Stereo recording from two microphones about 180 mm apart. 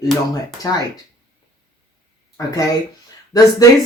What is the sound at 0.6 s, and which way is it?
Speech, 20° left (ahead or behind).